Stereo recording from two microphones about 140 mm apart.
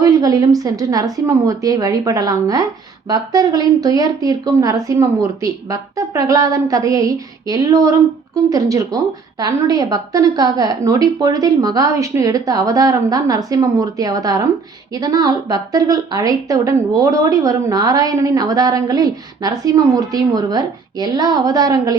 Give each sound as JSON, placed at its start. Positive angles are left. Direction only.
{"t": 0.0, "sound": "a woman's voice", "side_deg": -25}